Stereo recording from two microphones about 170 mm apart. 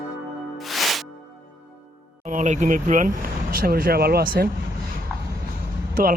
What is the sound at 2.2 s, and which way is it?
Speech, 45° right (ahead or behind).